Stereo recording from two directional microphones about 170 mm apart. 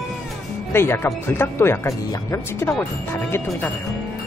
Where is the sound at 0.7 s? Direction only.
15° left (ahead or behind).